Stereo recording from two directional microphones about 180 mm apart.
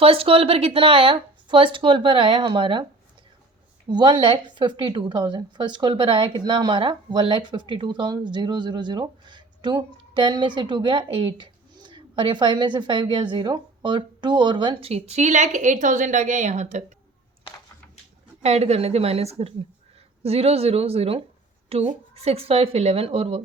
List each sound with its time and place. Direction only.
0.0 s a woman's voice: 30° right (ahead or behind)
3.8 s a woman's voice: 25° right (ahead or behind); by 16.8 s 40° right (ahead or behind)
18.4 s speech: 35° right (ahead or behind)